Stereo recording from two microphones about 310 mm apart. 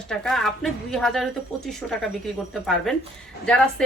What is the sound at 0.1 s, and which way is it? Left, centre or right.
A woman's voice, centre.